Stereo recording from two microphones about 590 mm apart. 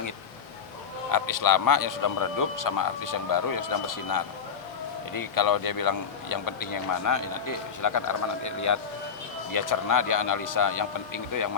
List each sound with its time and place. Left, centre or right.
1.1 s speech: left